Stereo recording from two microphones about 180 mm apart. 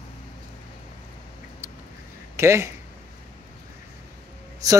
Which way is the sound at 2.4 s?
15° right (ahead or behind).